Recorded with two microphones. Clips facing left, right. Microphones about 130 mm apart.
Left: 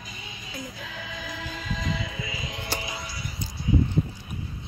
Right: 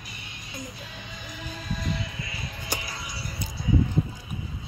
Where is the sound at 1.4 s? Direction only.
90° left.